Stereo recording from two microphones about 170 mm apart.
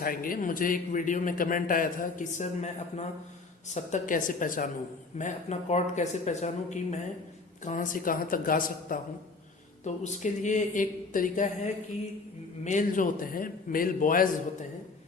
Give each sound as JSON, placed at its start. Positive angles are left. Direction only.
{"t": 0.0, "sound": "a man's voice", "side_deg": 55}
{"t": 9.8, "sound": "a man's voice", "side_deg": 45}